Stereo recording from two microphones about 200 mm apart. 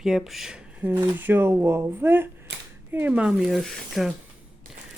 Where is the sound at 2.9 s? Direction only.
5° right (ahead or behind).